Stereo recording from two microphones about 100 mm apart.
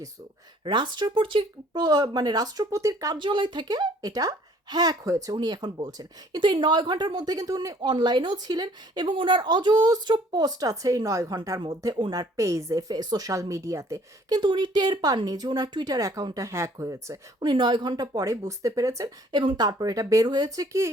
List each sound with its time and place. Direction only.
0.6 s speech: 55° right (ahead or behind)
1.7 s speech: 40° right (ahead or behind)
3.2 s a woman's voice: 55° right (ahead or behind); by 7.9 s 35° right (ahead or behind)
7.9 s a woman's voice: 50° right (ahead or behind); by 14.3 s 30° right (ahead or behind)
14.3 s speech: 50° right (ahead or behind); by 17.2 s 35° right (ahead or behind)
17.4 s speech: 50° right (ahead or behind); by 19.1 s 35° right (ahead or behind)
19.3 s a woman's voice: 50° right (ahead or behind)